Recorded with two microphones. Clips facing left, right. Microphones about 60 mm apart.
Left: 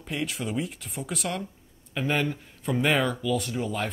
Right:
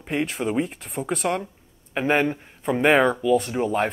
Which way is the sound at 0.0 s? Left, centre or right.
Right.